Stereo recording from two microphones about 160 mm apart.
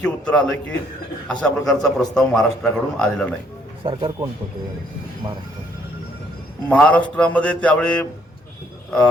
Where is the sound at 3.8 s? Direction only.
30° right (ahead or behind).